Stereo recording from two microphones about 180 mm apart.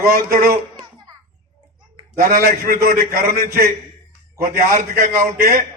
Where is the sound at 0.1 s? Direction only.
50° right (ahead or behind).